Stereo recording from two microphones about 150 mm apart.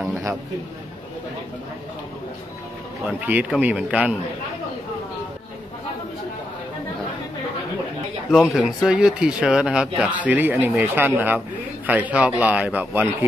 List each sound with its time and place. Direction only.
0.1 s a sound: 20° right (ahead or behind)
3.2 s a man's voice: 10° right (ahead or behind)
8.3 s a man's voice: 5° right (ahead or behind)